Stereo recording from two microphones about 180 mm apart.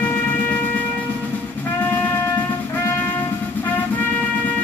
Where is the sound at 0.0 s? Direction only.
10° left (ahead or behind).